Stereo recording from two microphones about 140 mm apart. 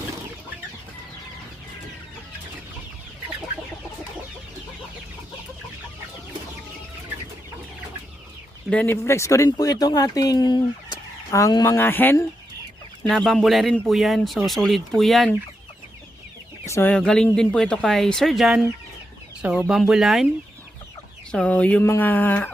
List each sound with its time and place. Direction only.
8.7 s speech: 15° left (ahead or behind)
13.1 s speech: centre (ahead or behind)
16.6 s speech: 20° left (ahead or behind)
16.9 s speech: 5° left (ahead or behind)
21.3 s speech: 10° left (ahead or behind)